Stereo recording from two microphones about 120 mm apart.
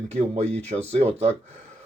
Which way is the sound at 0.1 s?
65° right (ahead or behind).